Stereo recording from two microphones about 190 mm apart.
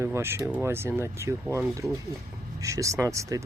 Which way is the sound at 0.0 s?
15° right (ahead or behind).